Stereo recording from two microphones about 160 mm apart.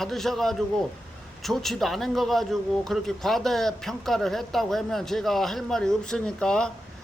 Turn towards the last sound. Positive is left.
turn(degrees=5)  # may be behind; listen again after turning